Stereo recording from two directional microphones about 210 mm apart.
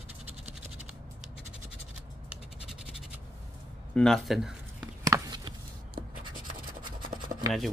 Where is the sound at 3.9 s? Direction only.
Centre (ahead or behind).